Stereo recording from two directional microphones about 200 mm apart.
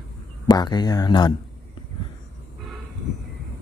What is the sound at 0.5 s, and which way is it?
Speech, 20° left (ahead or behind).